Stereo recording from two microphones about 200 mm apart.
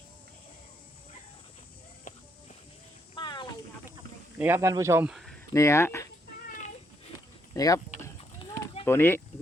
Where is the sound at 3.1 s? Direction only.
25° left (ahead or behind).